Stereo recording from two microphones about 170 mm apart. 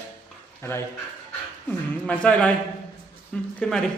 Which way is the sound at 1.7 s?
10° left (ahead or behind).